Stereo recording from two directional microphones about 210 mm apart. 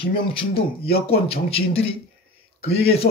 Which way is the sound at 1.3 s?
25° left (ahead or behind).